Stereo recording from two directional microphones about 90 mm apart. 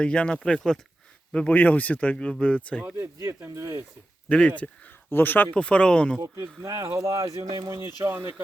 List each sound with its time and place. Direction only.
0.0 s speech: 10° left (ahead or behind)
2.8 s speech: 30° right (ahead or behind)
4.3 s speech: 15° left (ahead or behind)
6.2 s speech: 40° right (ahead or behind)
8.0 s speech: 25° right (ahead or behind)